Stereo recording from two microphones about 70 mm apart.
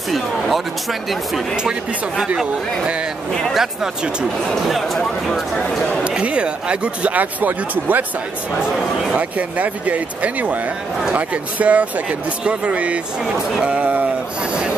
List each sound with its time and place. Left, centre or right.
1.6 s speech: centre
3.5 s speech: centre
5.0 s speech: centre
6.0 s speech: centre
8.5 s speech: centre